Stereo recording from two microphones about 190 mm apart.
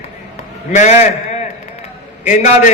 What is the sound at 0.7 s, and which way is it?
Speech, 40° left (ahead or behind).